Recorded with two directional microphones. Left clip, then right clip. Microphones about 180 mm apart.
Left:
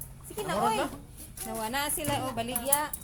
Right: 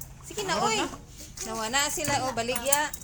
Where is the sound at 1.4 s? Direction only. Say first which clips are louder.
Right 4 dB; 15° right (ahead or behind).